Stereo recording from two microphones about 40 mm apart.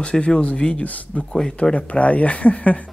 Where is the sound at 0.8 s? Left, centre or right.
Left.